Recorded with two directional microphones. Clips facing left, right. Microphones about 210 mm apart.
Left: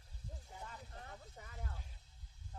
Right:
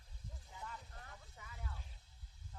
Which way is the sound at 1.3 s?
45° left (ahead or behind).